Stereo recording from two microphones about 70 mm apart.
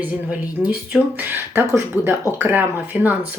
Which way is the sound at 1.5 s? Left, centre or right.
Right.